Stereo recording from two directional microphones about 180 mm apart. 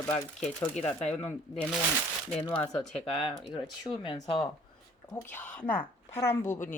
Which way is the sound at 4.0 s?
30° left (ahead or behind).